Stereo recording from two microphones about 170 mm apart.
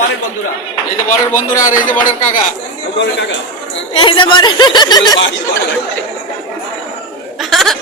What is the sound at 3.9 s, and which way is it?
Speech, 30° left (ahead or behind).